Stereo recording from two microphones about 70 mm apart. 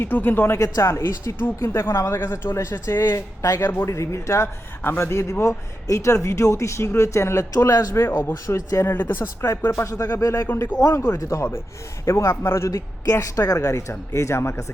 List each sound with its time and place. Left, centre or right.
0.0 s a man's voice: left
4.8 s a man's voice: left
7.9 s speech: left
8.5 s a man's voice: left
8.9 s speech: left
9.6 s a man's voice: left
10.4 s speech: left
10.9 s a man's voice: left